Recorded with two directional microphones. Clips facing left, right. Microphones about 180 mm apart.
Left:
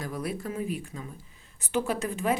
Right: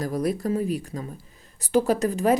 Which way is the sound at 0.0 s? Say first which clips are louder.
Right 8 dB; 40° right (ahead or behind).